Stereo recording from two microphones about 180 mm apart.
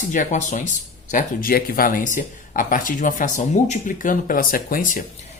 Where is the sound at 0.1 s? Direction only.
45° left (ahead or behind).